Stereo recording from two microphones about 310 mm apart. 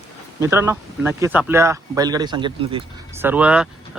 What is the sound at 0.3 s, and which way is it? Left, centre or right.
Speech, centre.